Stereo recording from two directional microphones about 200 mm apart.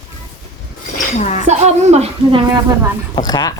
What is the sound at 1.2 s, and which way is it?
Speech, 35° left (ahead or behind).